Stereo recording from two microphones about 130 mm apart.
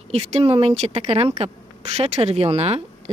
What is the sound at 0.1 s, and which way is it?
Speech, 50° right (ahead or behind).